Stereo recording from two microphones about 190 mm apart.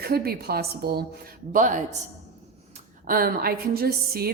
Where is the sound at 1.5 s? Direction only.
40° right (ahead or behind).